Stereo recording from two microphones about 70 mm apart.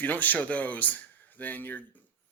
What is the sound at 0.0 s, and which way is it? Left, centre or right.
A man's voice, left.